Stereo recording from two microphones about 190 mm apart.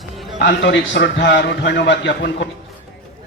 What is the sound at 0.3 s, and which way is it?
A man's voice, 60° left (ahead or behind).